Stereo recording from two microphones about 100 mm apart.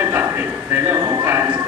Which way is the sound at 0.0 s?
25° right (ahead or behind).